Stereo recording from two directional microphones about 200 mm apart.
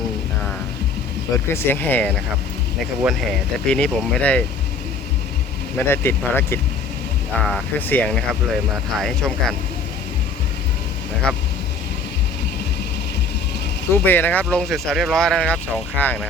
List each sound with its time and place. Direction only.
1.5 s speech: 10° left (ahead or behind)
5.7 s speech: 10° left (ahead or behind)
11.3 s speech: 5° left (ahead or behind)
13.9 s speech: 10° left (ahead or behind)